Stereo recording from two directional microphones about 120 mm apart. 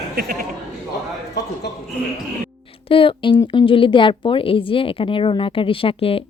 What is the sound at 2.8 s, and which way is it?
Speech, 50° left (ahead or behind).